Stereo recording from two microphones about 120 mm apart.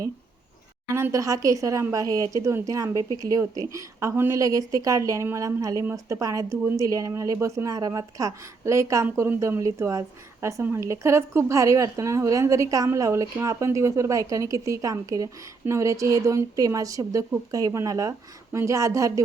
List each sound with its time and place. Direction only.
0.9 s speech: 20° right (ahead or behind)